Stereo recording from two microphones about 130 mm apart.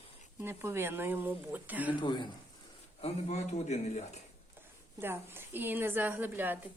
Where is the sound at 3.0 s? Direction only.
55° left (ahead or behind).